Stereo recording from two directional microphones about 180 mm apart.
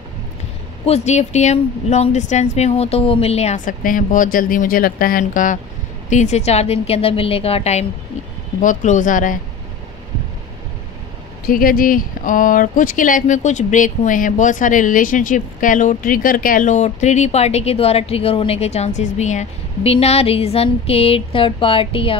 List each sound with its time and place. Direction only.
0.8 s speech: 35° left (ahead or behind)
11.4 s speech: 55° left (ahead or behind); by 22.1 s 30° left (ahead or behind)